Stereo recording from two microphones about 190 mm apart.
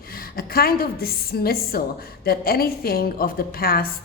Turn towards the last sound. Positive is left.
turn(degrees=50)  # may be behind; listen again after turning